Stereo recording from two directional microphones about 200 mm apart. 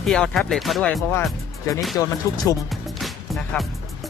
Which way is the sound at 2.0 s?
15° left (ahead or behind).